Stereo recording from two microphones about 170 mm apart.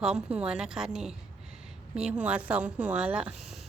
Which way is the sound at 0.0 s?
5° right (ahead or behind).